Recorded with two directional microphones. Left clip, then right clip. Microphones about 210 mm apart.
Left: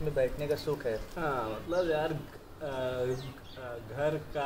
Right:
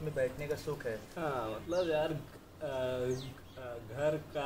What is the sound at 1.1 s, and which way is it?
A man's voice, 5° right (ahead or behind).